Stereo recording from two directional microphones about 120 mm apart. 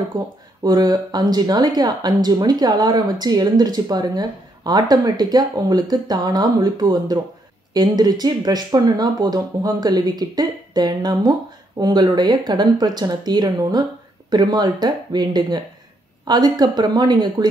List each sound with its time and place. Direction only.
0.2 s speech: 35° right (ahead or behind)